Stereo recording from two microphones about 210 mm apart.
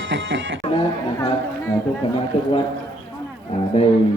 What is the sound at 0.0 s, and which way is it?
Speech, 65° right (ahead or behind).